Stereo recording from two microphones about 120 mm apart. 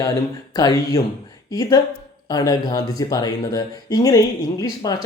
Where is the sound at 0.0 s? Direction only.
30° left (ahead or behind).